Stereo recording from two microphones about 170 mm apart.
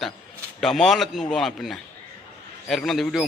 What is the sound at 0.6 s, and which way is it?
A man's voice, centre (ahead or behind).